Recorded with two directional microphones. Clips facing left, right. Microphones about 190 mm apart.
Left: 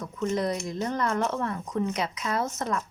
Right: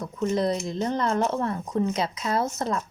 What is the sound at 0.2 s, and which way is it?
Speech, 30° right (ahead or behind).